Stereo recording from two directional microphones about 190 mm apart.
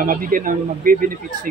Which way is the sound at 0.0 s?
45° right (ahead or behind).